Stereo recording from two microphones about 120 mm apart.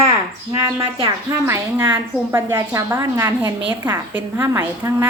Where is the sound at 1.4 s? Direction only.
20° right (ahead or behind).